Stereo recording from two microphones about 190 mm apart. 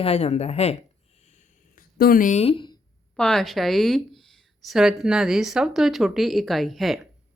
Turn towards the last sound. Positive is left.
turn(degrees=0)  # may be behind; listen again after turning